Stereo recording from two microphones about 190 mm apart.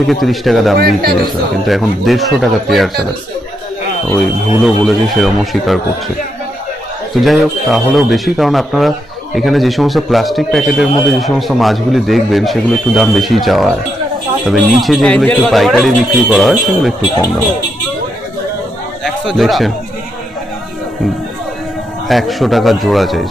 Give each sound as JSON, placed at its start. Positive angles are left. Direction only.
{"t": 0.0, "sound": "a man's voice", "side_deg": 0}
{"t": 0.7, "sound": "speech", "side_deg": -55}
{"t": 1.7, "sound": "a man's voice", "side_deg": 0}
{"t": 4.6, "sound": "a man's voice", "side_deg": 0}
{"t": 7.2, "sound": "a man's voice", "side_deg": 0}
{"t": 19.0, "sound": "speech", "side_deg": 0}
{"t": 22.0, "sound": "a man's voice", "side_deg": 0}